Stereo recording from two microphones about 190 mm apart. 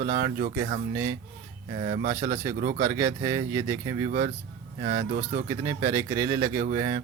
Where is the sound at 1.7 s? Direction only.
30° right (ahead or behind).